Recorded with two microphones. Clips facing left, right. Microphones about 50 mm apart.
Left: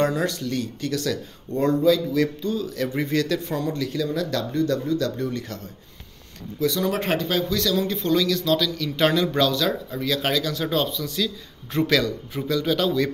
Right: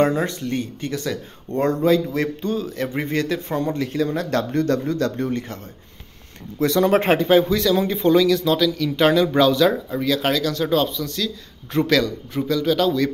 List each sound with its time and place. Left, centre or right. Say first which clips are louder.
0.0 s speech: right 3 dB; right
1.5 s a man's voice: right 1 dB; right; by 13.1 s centre